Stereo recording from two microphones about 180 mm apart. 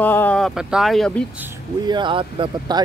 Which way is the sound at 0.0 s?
10° left (ahead or behind).